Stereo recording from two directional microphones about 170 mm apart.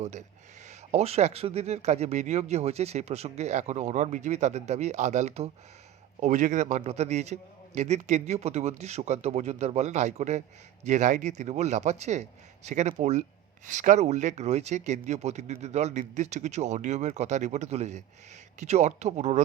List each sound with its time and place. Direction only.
0.0 s speech: 45° right (ahead or behind)